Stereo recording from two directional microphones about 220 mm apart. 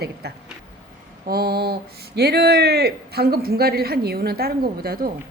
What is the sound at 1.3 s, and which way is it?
A man's voice, 45° right (ahead or behind).